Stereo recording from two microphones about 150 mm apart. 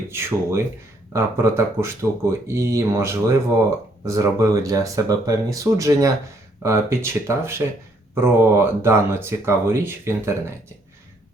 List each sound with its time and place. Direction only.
0.1 s speech: 15° right (ahead or behind)